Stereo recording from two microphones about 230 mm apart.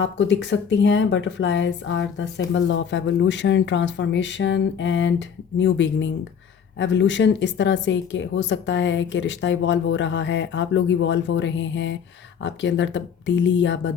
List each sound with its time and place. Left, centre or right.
0.0 s speech: left